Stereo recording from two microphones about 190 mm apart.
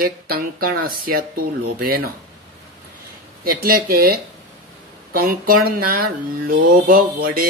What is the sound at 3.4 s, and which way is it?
Speech, 50° right (ahead or behind).